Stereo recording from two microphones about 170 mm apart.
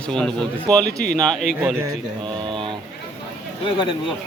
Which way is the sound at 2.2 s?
30° right (ahead or behind).